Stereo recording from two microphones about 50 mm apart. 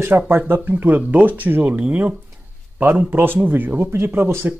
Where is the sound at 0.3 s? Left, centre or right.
Right.